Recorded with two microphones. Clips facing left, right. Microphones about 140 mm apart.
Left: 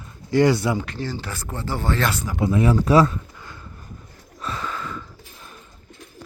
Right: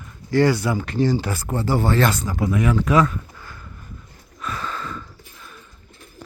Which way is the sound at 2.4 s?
30° left (ahead or behind).